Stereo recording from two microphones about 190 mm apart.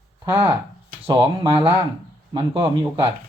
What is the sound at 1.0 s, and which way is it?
Speech, 25° right (ahead or behind).